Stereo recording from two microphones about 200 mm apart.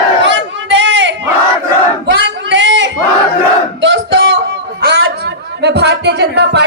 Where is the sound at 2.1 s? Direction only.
60° right (ahead or behind).